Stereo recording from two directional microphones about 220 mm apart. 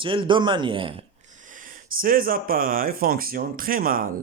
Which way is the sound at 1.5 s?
40° right (ahead or behind).